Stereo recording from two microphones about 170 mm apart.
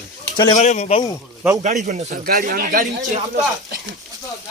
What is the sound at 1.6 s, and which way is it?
Speech, 45° right (ahead or behind).